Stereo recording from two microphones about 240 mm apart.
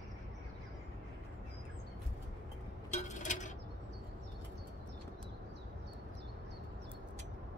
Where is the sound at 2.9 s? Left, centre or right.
Left.